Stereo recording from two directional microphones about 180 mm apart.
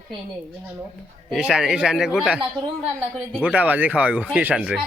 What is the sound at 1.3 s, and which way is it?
A man's voice, centre (ahead or behind).